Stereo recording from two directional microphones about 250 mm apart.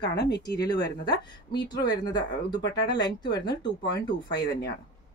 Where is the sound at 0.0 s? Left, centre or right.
Left.